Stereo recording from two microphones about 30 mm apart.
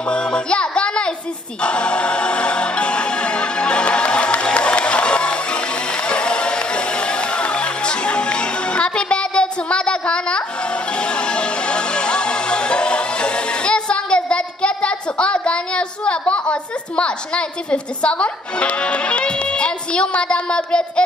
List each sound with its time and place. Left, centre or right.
0.3 s music: left